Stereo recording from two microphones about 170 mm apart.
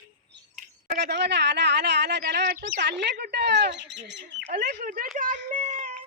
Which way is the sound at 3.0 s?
80° right.